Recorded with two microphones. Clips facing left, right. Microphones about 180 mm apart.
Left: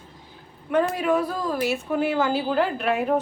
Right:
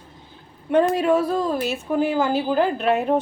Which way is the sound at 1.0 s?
30° right (ahead or behind).